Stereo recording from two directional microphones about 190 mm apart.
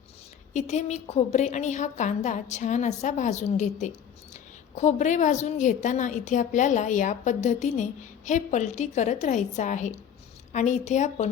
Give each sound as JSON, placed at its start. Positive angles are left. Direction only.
{"t": 0.5, "sound": "a woman's voice", "side_deg": 35}